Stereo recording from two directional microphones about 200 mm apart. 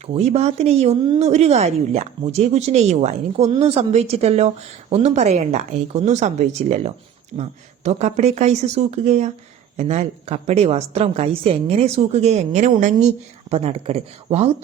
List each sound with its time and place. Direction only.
0.1 s speech: 30° right (ahead or behind)